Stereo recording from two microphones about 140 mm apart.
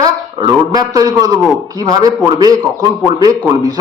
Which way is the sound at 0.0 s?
25° right (ahead or behind).